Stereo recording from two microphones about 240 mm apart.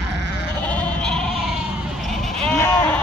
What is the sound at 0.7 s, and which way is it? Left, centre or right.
Sheep, centre.